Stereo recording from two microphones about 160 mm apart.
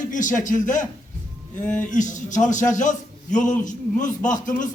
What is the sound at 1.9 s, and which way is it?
A man's voice, 50° left (ahead or behind).